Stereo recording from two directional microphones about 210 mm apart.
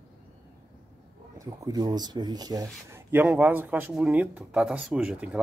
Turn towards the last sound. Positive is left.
turn(degrees=-5)  # may be behind; listen again after turning